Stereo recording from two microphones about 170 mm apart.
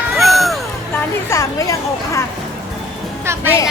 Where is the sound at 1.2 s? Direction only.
15° left (ahead or behind).